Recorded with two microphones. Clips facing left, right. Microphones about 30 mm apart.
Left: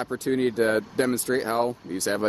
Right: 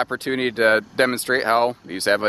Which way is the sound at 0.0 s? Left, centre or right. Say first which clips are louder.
Right 2 dB; right.